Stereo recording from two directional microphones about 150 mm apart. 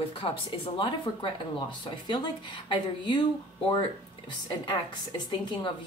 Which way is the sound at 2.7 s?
30° left (ahead or behind).